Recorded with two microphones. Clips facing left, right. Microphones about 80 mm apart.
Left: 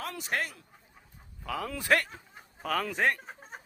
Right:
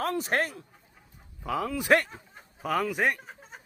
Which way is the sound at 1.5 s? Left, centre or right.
Right.